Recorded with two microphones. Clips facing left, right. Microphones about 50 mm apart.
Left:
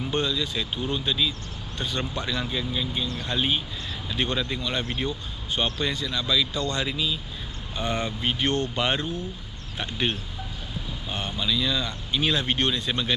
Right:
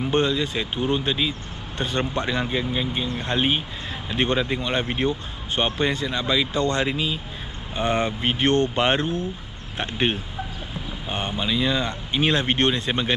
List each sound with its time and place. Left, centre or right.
0.1 s a man's voice: right